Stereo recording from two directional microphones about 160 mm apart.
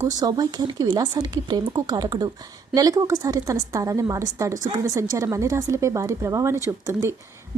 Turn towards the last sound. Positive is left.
turn(degrees=-20)  # may be behind; listen again after turning